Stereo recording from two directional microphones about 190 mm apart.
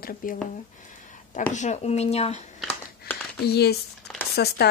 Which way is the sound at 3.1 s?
55° left (ahead or behind).